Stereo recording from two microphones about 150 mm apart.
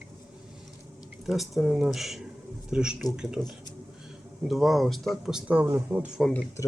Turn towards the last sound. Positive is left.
turn(degrees=5)  # may be behind; listen again after turning